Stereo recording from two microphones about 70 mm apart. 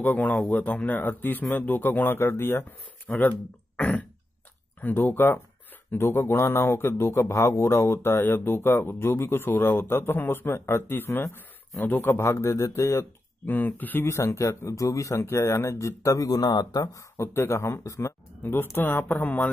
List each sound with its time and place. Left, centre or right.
0.0 s speech: left
3.2 s speech: left
4.9 s speech: left
13.5 s speech: left
14.1 s speech: left
16.8 s speech: left